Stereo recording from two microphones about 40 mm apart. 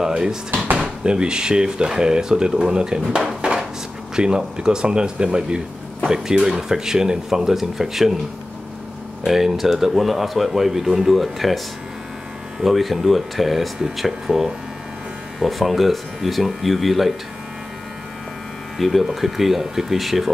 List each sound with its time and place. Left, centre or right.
0.0 s speech: centre
9.2 s speech: centre
12.6 s speech: centre
18.8 s speech: centre